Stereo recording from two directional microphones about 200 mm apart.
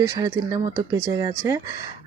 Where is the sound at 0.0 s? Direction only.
20° right (ahead or behind).